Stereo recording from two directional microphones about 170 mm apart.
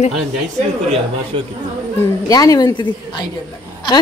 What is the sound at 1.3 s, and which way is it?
Speech, 30° right (ahead or behind).